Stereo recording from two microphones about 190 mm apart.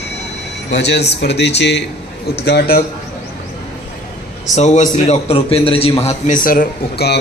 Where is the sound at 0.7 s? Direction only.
60° left (ahead or behind).